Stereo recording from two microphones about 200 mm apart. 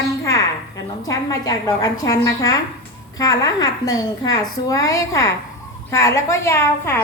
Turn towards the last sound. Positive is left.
turn(degrees=10)  # may be behind; listen again after turning